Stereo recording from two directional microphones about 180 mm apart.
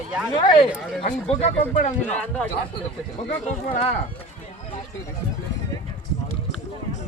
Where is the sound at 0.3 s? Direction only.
25° left (ahead or behind).